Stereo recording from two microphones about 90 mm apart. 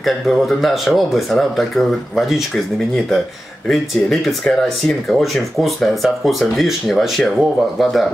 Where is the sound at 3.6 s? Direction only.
Centre (ahead or behind).